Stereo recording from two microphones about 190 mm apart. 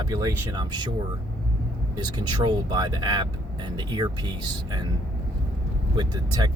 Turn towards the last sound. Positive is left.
turn(degrees=-20)  # may be behind; listen again after turning